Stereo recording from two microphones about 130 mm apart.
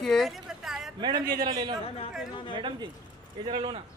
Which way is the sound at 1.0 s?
35° right (ahead or behind).